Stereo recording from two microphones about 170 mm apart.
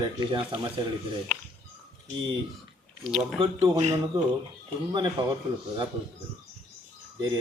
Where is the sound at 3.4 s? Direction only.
35° right (ahead or behind).